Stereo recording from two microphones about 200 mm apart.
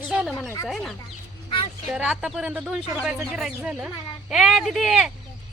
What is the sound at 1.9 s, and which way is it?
Speech, 5° right (ahead or behind).